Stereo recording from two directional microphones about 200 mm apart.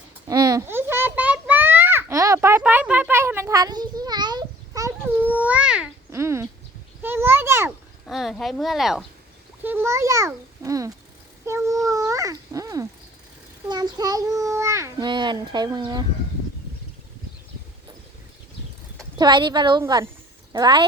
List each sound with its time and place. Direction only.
0.3 s a sound: 20° right (ahead or behind)
8.0 s a woman's voice: centre (ahead or behind)
9.6 s a child's voice: 10° right (ahead or behind)
11.4 s a sound: 15° right (ahead or behind)
13.7 s a child's voice: 20° right (ahead or behind)
19.2 s a woman's voice: 20° right (ahead or behind)